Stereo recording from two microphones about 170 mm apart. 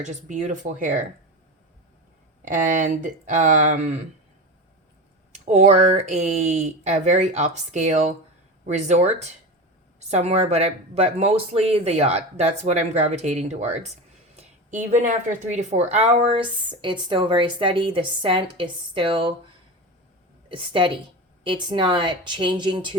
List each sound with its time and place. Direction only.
0.0 s speech: 45° right (ahead or behind)
2.5 s speech: 50° right (ahead or behind)
5.3 s speech: 45° right (ahead or behind)
14.3 s a sound: 45° right (ahead or behind)
15.4 s speech: 45° right (ahead or behind)
20.5 s speech: 30° right (ahead or behind)